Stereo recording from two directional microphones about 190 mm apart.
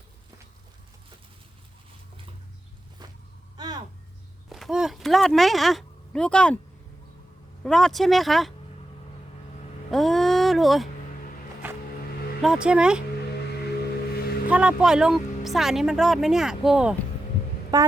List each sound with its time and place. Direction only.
3.0 s vehicle: 20° right (ahead or behind)
3.6 s a sound: 20° right (ahead or behind)
4.4 s a sound: centre (ahead or behind)
7.6 s speech: centre (ahead or behind)
9.9 s speech: centre (ahead or behind)
12.4 s speech: 5° right (ahead or behind)
14.1 s vehicle: 55° left (ahead or behind)
14.5 s speech: 5° right (ahead or behind)
17.7 s speech: 20° right (ahead or behind)